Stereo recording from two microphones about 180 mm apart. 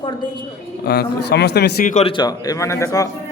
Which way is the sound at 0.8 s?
60° left (ahead or behind).